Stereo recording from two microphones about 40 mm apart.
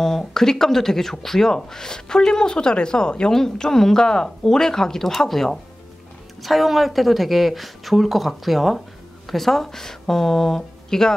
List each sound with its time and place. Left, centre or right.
0.0 s a woman's voice: centre